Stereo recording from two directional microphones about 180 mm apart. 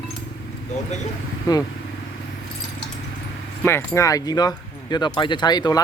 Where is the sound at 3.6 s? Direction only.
15° left (ahead or behind).